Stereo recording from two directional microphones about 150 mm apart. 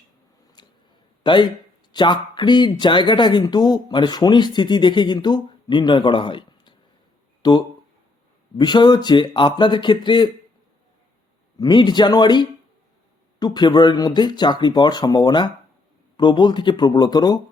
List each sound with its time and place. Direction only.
0.6 s a sound: 30° left (ahead or behind)
1.2 s a man's voice: 30° left (ahead or behind)
11.6 s speech: 30° left (ahead or behind)